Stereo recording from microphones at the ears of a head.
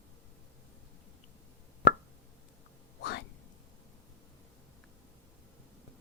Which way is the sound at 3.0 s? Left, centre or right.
Left.